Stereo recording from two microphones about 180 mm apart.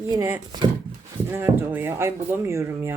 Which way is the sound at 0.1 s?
15° right (ahead or behind).